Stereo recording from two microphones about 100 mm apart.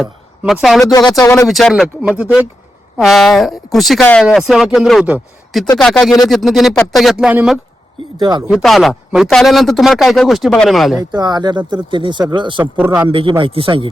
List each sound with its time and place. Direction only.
0.0 s speech: centre (ahead or behind)
0.9 s speech: 40° left (ahead or behind)
1.5 s a man's voice: centre (ahead or behind)
2.0 s speech: 10° right (ahead or behind)
3.0 s a man's voice: centre (ahead or behind)
7.3 s speech: 10° right (ahead or behind)
8.2 s speech: 45° right (ahead or behind)
8.4 s a man's voice: centre (ahead or behind)
11.1 s speech: 45° right (ahead or behind)
12.7 s speech: 15° right (ahead or behind)
13.1 s a man's voice: 60° right (ahead or behind)